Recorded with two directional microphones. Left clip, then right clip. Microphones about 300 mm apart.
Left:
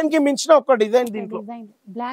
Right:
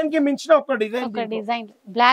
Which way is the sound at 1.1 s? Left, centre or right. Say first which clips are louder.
Right 6 dB; centre.